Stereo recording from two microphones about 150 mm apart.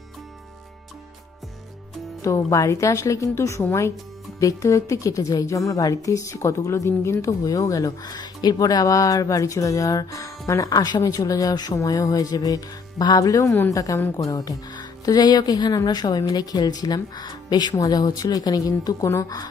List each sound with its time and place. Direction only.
2.2 s a woman's voice: 20° left (ahead or behind)